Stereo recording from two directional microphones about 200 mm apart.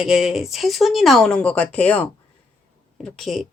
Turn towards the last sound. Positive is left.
turn(degrees=0)  # may be behind; listen again after turning